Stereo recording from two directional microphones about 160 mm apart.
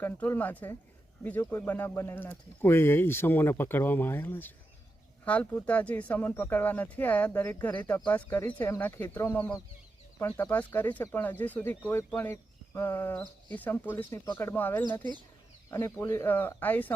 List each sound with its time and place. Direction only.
0.0 s speech: 10° left (ahead or behind)